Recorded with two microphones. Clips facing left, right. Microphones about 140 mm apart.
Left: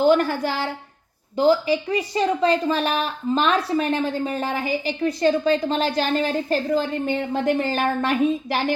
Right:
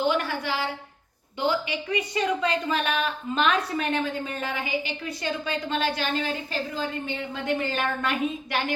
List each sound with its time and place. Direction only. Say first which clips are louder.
0.0 s a woman's voice: left 8 dB; 45° left (ahead or behind)